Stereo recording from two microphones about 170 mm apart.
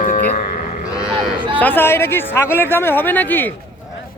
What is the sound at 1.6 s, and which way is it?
Speech, 10° left (ahead or behind).